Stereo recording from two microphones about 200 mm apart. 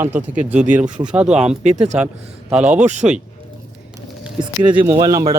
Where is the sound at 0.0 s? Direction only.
10° right (ahead or behind).